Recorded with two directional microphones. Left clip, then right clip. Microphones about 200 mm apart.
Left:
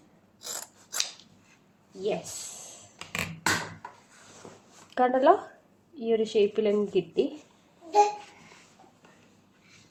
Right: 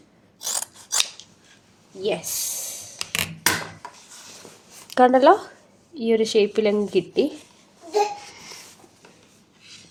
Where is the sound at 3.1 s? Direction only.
35° right (ahead or behind).